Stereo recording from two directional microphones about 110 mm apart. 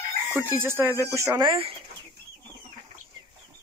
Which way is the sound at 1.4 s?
55° right (ahead or behind).